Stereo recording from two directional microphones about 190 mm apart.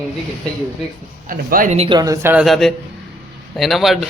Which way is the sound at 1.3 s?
45° right (ahead or behind).